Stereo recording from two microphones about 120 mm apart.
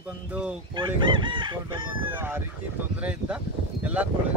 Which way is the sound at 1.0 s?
45° right (ahead or behind).